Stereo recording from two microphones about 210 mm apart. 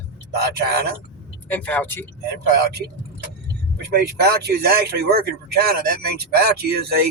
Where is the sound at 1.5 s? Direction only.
5° left (ahead or behind).